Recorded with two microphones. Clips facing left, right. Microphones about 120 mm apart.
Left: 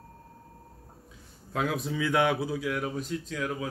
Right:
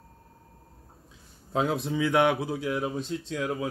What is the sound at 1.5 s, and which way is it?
Speech, 25° right (ahead or behind).